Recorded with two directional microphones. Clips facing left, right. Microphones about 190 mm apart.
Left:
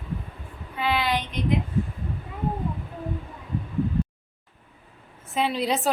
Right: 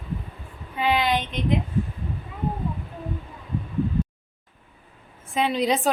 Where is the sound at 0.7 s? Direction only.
20° right (ahead or behind).